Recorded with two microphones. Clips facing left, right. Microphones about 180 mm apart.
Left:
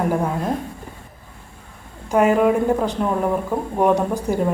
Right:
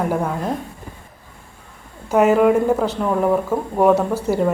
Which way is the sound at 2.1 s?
5° right (ahead or behind).